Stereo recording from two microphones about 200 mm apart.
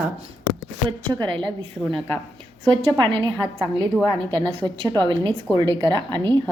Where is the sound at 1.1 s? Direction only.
20° right (ahead or behind).